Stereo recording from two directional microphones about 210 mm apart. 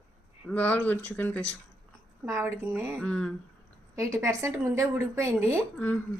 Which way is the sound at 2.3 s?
10° right (ahead or behind).